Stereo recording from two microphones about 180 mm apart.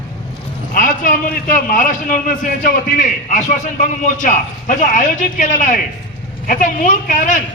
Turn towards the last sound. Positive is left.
turn(degrees=45)  # may be behind; listen again after turning